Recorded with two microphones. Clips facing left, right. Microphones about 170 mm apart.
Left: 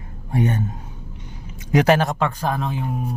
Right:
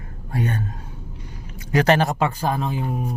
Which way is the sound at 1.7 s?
15° left (ahead or behind).